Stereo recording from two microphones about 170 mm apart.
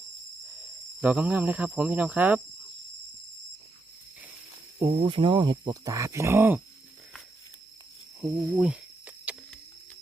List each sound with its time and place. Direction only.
1.0 s speech: 10° right (ahead or behind)
4.9 s speech: 30° right (ahead or behind); by 6.6 s 15° right (ahead or behind)
8.2 s snake: centre (ahead or behind)